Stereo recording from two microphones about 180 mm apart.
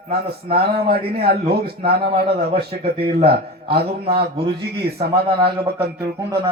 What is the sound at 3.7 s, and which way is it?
Speech, 60° right (ahead or behind).